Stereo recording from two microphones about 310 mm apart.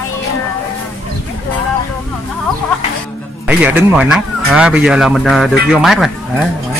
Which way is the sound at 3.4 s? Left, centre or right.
Centre.